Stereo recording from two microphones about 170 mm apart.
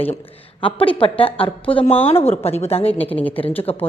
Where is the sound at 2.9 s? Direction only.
10° left (ahead or behind).